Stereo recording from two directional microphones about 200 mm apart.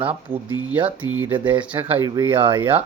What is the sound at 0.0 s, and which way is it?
Speech, 25° right (ahead or behind).